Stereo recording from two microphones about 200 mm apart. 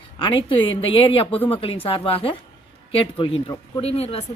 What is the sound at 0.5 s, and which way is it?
A woman's voice, 25° left (ahead or behind).